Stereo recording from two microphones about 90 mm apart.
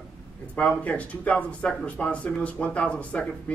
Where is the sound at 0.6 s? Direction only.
15° left (ahead or behind).